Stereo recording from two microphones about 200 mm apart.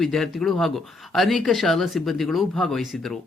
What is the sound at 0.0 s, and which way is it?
Speech, centre (ahead or behind).